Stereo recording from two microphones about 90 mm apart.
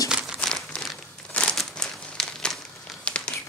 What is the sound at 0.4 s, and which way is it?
Crumpling, 10° left (ahead or behind).